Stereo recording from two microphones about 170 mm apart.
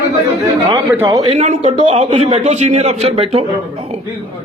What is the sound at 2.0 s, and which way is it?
A man's voice, 40° right (ahead or behind).